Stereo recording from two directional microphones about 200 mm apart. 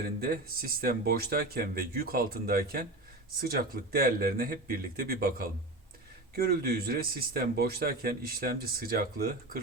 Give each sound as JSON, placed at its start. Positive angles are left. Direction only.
{"t": 0.0, "sound": "speech", "side_deg": -50}